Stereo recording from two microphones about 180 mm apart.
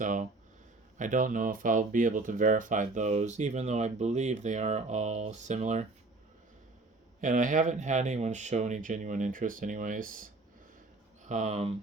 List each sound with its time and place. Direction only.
0.0 s speech: 45° right (ahead or behind)
7.2 s speech: 45° right (ahead or behind)
11.3 s speech: 40° right (ahead or behind)